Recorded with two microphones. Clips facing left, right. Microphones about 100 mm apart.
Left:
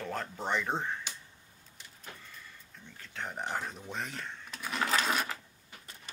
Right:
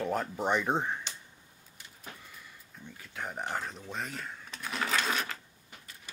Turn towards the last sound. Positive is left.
turn(degrees=5)  # may be behind; listen again after turning